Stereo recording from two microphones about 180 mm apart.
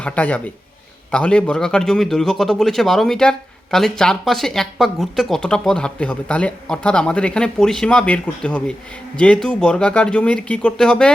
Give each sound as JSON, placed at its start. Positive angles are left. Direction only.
{"t": 0.0, "sound": "a man's voice", "side_deg": 5}